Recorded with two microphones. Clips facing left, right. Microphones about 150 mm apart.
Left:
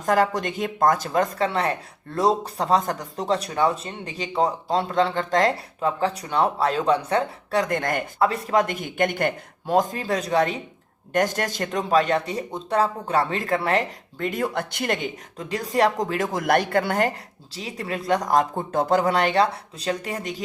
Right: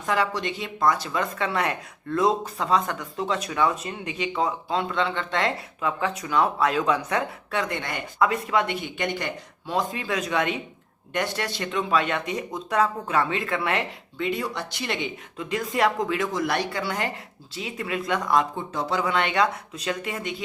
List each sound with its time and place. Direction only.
0.0 s speech: 45° left (ahead or behind)
7.6 s speech: 45° left (ahead or behind)
8.2 s speech: 35° left (ahead or behind)